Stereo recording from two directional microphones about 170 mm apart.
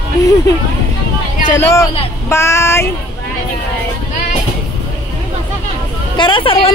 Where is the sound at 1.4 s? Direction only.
20° left (ahead or behind).